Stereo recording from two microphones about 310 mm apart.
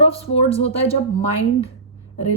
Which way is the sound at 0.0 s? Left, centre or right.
Centre.